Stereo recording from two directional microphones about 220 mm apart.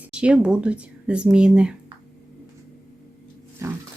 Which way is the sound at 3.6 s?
15° right (ahead or behind).